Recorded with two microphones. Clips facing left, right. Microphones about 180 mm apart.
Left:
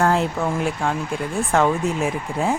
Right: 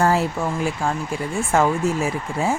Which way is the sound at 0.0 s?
5° right (ahead or behind).